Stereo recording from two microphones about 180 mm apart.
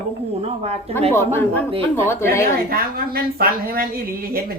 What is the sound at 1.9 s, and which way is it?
Speech, 15° left (ahead or behind).